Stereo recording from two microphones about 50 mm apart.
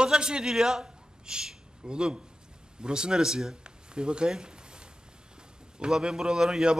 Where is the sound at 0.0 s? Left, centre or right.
Centre.